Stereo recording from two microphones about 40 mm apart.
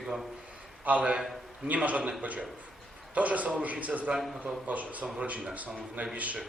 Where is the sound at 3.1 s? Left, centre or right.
Right.